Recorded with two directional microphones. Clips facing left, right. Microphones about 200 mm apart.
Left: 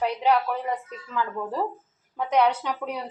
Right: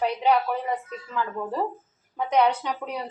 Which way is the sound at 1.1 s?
10° right (ahead or behind).